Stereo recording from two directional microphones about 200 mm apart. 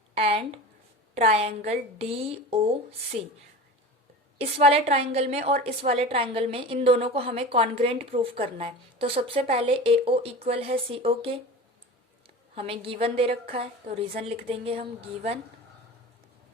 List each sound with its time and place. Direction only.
0.1 s a sound: 30° right (ahead or behind)
1.1 s a woman's voice: 30° right (ahead or behind)
4.4 s a woman's voice: 30° right (ahead or behind)
12.5 s a woman's voice: 30° right (ahead or behind)